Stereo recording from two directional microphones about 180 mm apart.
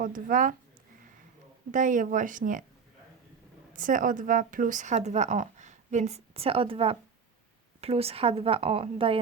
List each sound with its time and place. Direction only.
0.0 s speech: 50° right (ahead or behind)
1.7 s speech: 45° right (ahead or behind)
3.7 s a woman's voice: 45° right (ahead or behind); by 9.1 s 30° right (ahead or behind)